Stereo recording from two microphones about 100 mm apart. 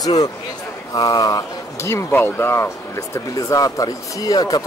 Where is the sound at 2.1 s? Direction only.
20° left (ahead or behind).